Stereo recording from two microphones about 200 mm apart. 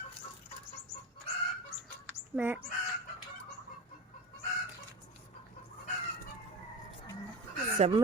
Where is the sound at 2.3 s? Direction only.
10° right (ahead or behind).